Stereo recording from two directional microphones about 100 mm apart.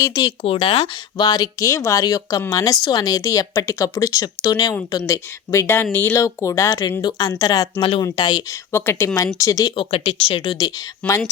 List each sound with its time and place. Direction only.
0.2 s speech: 65° left (ahead or behind)
1.2 s speech: 40° left (ahead or behind)
4.4 s speech: 45° left (ahead or behind)
7.8 s speech: 60° left (ahead or behind)
8.1 s speech: 45° left (ahead or behind)
8.7 s speech: 25° left (ahead or behind)
9.7 s speech: 75° left (ahead or behind); by 10.7 s 55° left (ahead or behind)
11.0 s speech: 15° left (ahead or behind)